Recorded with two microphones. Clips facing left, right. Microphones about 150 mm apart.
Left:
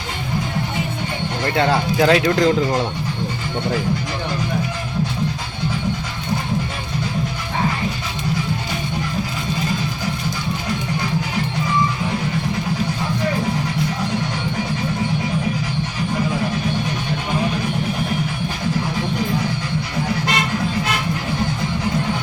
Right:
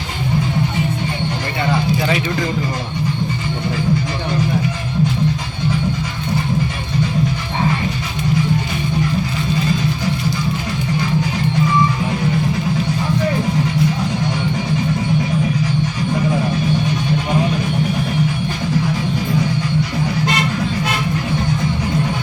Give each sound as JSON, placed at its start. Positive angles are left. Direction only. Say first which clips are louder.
{"t": 1.5, "sound": "speech", "louder": "left 2 dB", "side_deg": 90}